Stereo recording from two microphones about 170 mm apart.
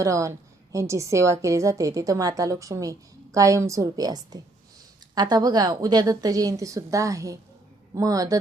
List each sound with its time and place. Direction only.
0.0 s a woman's voice: 20° right (ahead or behind)